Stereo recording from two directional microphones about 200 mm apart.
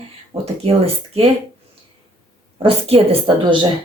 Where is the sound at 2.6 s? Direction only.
30° right (ahead or behind).